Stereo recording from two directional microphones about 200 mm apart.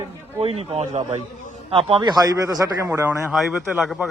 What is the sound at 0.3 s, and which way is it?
A man's voice, 30° right (ahead or behind).